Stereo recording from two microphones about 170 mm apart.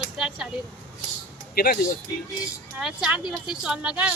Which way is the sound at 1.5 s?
65° left (ahead or behind).